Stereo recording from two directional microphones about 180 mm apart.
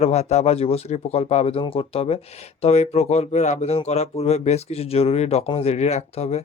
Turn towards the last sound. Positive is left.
turn(degrees=35)  # may be behind; listen again after turning